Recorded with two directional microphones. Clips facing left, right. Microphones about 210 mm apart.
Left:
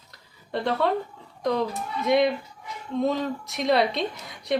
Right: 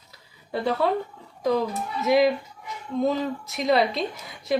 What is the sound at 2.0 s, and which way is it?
A woman's voice, 5° right (ahead or behind).